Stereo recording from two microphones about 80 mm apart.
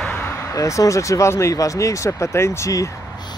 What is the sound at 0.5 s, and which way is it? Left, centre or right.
Speech, left.